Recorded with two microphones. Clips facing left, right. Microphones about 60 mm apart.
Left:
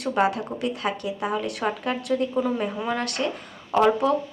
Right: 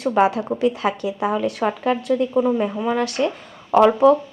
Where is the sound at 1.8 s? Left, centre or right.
Right.